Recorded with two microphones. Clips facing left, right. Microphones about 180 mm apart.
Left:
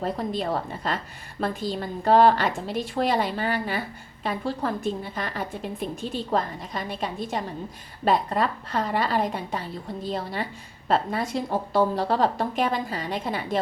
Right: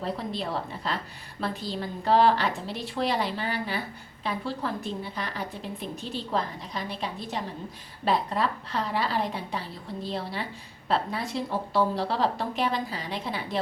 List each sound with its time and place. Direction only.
0.0 s a woman's voice: 45° left (ahead or behind)